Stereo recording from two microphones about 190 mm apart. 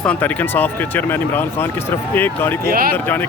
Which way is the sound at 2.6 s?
50° right (ahead or behind).